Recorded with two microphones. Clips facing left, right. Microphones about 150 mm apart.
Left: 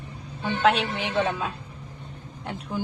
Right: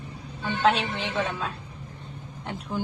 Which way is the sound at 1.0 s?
20° left (ahead or behind).